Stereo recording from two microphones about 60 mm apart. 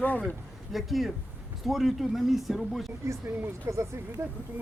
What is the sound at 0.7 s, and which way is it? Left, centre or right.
Speech, centre.